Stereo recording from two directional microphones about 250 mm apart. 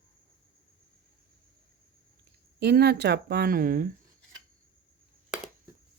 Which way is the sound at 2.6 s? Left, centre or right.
Right.